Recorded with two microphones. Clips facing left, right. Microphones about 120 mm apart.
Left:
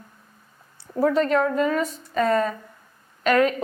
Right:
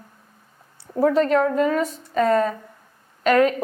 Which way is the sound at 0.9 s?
35° right (ahead or behind).